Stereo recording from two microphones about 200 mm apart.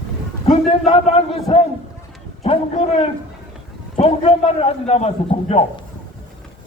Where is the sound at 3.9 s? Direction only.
30° left (ahead or behind).